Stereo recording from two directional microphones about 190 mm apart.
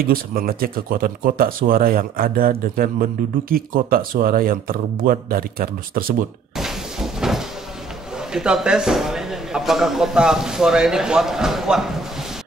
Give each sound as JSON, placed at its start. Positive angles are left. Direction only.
{"t": 0.0, "sound": "speech", "side_deg": -50}
{"t": 6.5, "sound": "a sound", "side_deg": 0}
{"t": 8.3, "sound": "a man's voice", "side_deg": -5}